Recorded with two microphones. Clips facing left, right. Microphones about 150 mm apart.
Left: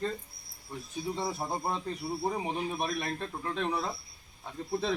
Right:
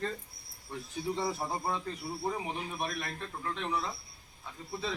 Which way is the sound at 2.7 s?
35° left (ahead or behind).